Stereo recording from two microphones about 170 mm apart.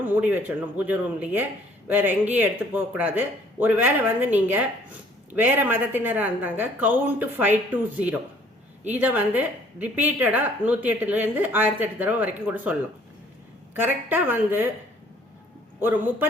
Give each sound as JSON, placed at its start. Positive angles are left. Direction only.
{"t": 0.0, "sound": "speech", "side_deg": -10}
{"t": 13.7, "sound": "speech", "side_deg": -10}
{"t": 15.8, "sound": "speech", "side_deg": -10}